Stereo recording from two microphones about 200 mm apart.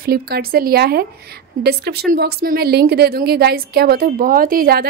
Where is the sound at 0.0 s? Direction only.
50° right (ahead or behind).